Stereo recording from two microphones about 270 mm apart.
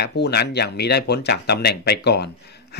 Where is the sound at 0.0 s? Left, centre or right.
Left.